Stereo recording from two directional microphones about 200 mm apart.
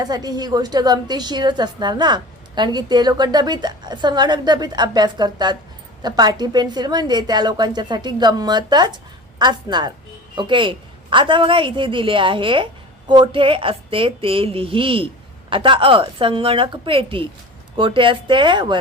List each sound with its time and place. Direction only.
0.0 s a woman's voice: 20° right (ahead or behind)